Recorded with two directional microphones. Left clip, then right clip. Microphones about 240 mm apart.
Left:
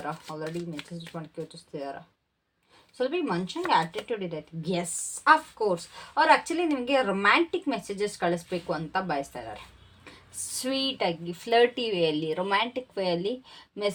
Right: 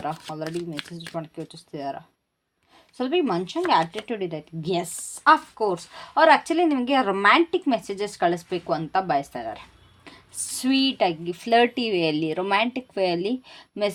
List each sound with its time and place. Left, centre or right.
0.0 s a woman's voice: right
3.0 s a woman's voice: right